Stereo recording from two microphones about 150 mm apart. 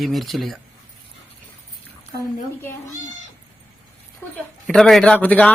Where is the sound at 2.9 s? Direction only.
55° left (ahead or behind).